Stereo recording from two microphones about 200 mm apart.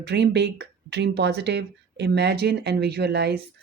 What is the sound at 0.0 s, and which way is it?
Speech, 55° right (ahead or behind).